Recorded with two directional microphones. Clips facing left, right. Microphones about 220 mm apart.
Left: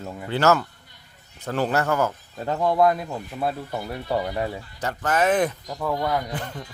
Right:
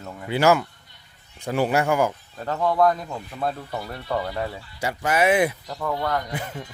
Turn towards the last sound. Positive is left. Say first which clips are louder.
# right 1 dB
turn(degrees=-5)  # may be behind; listen again after turning